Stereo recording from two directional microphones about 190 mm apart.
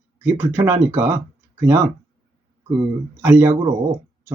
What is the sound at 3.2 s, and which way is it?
Speech, 10° right (ahead or behind).